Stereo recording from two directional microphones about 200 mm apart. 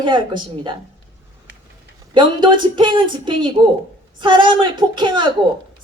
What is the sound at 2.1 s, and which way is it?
Speech, 25° right (ahead or behind).